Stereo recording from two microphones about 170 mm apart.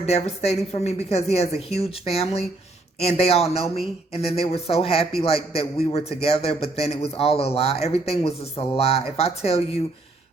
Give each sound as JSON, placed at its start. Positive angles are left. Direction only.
{"t": 0.0, "sound": "speech", "side_deg": 40}